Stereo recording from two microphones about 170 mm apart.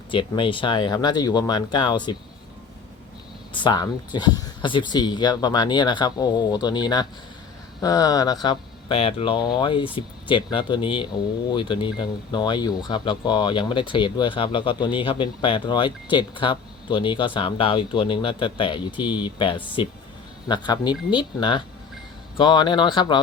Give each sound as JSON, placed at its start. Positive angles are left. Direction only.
{"t": 0.1, "sound": "speech", "side_deg": 30}
{"t": 3.5, "sound": "speech", "side_deg": 25}